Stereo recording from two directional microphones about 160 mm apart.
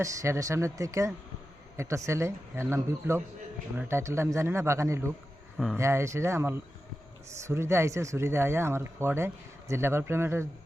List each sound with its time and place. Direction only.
0.0 s speech: 20° right (ahead or behind)